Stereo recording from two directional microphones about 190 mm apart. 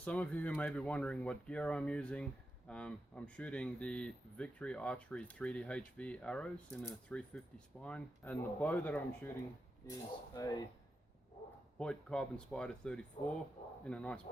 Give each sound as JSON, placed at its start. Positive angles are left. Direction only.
{"t": 0.0, "sound": "speech", "side_deg": 5}
{"t": 11.8, "sound": "speech", "side_deg": 5}